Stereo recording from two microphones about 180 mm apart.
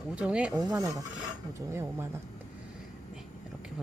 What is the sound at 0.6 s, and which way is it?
Speech, 20° right (ahead or behind).